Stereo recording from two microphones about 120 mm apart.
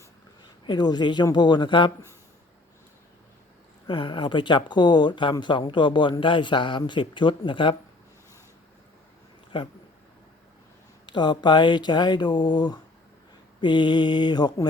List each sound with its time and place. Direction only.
0.7 s speech: 35° left (ahead or behind)
3.8 s speech: 45° left (ahead or behind)
9.5 s speech: 45° left (ahead or behind)
11.0 s speech: 40° left (ahead or behind)